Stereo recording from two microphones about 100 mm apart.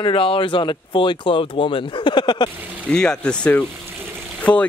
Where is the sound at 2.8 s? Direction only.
10° left (ahead or behind).